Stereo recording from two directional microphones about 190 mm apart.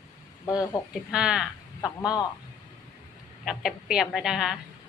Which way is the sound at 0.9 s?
5° right (ahead or behind).